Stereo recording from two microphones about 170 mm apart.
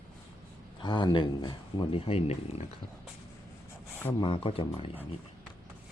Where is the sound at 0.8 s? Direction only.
25° left (ahead or behind).